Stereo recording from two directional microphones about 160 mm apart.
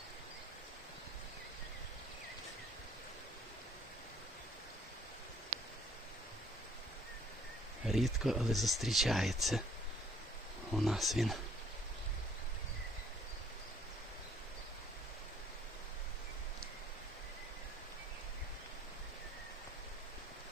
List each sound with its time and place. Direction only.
7.9 s speech: centre (ahead or behind)
10.8 s speech: centre (ahead or behind)